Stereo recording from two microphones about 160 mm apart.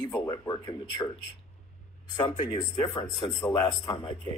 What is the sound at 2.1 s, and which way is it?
Speech, 30° left (ahead or behind).